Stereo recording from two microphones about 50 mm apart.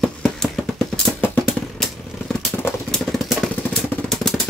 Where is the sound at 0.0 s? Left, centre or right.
Centre.